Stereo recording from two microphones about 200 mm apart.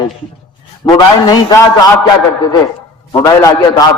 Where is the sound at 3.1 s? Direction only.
20° left (ahead or behind).